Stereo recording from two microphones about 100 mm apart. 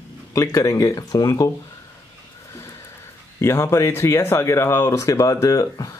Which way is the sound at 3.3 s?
25° left (ahead or behind).